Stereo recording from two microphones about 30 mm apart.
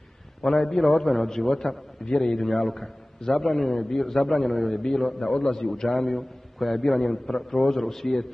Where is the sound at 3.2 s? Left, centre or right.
Left.